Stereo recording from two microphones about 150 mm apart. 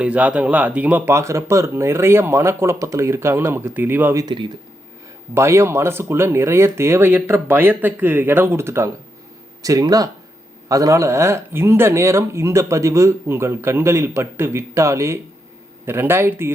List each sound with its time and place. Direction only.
0.0 s speech: 10° right (ahead or behind)